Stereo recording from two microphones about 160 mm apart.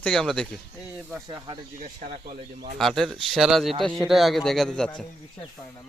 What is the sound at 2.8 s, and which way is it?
Speech, centre (ahead or behind).